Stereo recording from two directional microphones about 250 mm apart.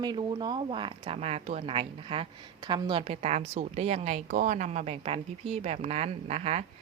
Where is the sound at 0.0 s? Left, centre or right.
Centre.